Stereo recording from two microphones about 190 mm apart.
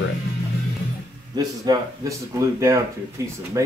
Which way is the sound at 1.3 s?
20° right (ahead or behind).